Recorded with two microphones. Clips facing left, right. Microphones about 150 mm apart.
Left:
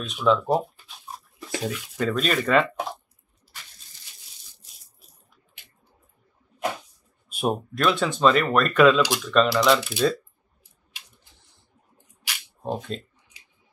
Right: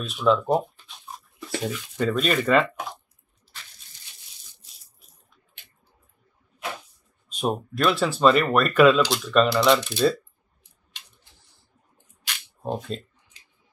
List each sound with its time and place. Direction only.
0.0 s speech: centre (ahead or behind)
7.2 s speech: 10° left (ahead or behind)
12.3 s single-lens reflex camera: 5° left (ahead or behind)